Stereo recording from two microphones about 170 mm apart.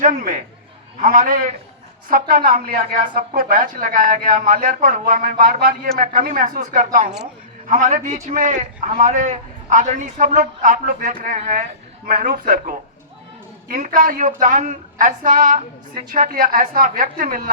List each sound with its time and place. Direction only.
0.0 s a man's voice: 50° right (ahead or behind)